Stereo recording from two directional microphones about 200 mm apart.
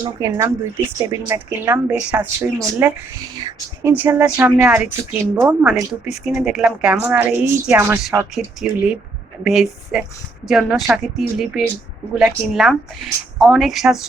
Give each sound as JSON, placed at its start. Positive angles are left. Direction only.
{"t": 0.0, "sound": "speech", "side_deg": -20}
{"t": 3.9, "sound": "speech", "side_deg": -5}